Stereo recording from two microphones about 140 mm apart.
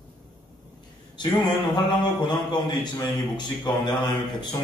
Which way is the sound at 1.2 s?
30° left (ahead or behind).